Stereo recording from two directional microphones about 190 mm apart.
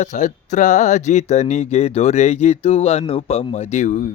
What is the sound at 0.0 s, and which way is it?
Speech, 40° left (ahead or behind).